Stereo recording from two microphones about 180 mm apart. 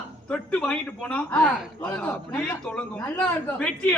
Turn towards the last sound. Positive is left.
turn(degrees=5)  # may be behind; listen again after turning